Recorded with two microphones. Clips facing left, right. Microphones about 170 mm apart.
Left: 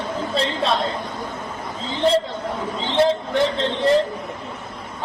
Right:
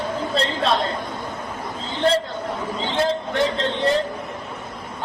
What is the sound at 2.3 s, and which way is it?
Speech, 25° left (ahead or behind).